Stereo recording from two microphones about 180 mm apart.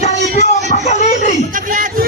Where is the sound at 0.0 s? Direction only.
40° left (ahead or behind).